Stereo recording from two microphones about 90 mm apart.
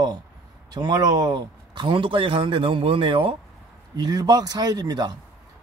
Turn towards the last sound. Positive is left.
turn(degrees=-50)  # may be behind; listen again after turning